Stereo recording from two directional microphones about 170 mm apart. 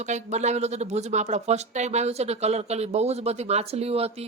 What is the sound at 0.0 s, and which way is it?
A woman's voice, 40° right (ahead or behind).